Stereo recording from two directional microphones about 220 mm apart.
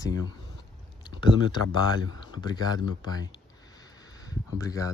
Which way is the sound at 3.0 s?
15° left (ahead or behind).